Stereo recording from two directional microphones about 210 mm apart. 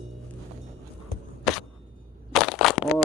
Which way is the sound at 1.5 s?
Centre (ahead or behind).